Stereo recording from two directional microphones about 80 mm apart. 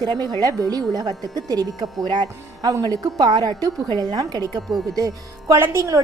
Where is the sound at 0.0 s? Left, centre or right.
Right.